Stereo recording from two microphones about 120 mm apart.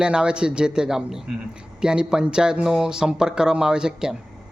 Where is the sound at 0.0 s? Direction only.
5° right (ahead or behind).